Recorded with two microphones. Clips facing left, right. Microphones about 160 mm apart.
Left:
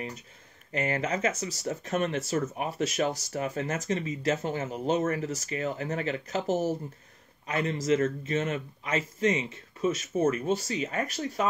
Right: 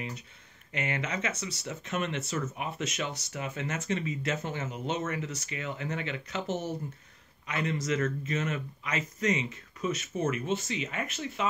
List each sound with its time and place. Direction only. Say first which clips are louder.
0.7 s speech: left 5 dB; 35° left (ahead or behind)